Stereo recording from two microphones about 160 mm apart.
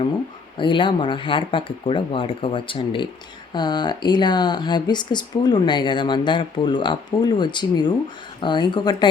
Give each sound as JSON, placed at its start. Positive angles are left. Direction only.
{"t": 0.5, "sound": "speech", "side_deg": 30}